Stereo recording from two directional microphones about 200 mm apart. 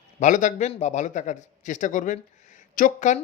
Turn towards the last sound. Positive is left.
turn(degrees=40)  # may be behind; listen again after turning